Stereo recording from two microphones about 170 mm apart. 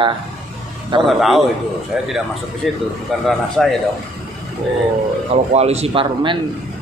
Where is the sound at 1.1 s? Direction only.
Centre (ahead or behind).